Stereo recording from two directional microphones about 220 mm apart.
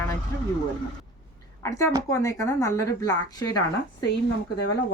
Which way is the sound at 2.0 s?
15° left (ahead or behind).